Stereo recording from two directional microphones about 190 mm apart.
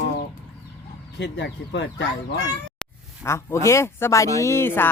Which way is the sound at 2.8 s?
5° left (ahead or behind).